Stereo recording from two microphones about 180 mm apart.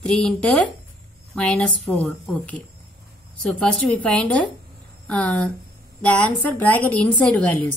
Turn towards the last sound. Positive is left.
turn(degrees=5)  # may be behind; listen again after turning